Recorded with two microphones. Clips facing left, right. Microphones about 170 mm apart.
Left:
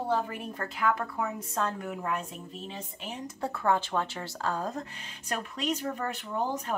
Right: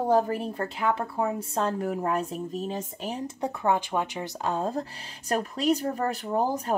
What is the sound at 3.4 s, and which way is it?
Speech, 15° right (ahead or behind).